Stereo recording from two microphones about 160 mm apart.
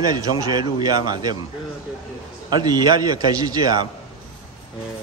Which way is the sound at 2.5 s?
25° right (ahead or behind).